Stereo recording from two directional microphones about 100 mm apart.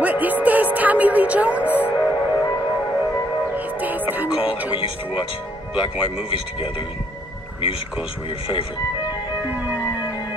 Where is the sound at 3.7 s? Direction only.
15° right (ahead or behind).